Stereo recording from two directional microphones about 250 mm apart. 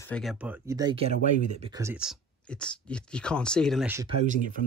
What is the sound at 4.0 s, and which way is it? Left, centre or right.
Speech, right.